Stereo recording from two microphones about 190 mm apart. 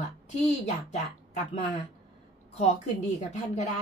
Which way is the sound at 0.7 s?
35° left (ahead or behind).